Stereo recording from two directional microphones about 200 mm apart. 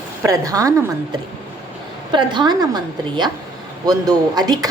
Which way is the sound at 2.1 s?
20° right (ahead or behind).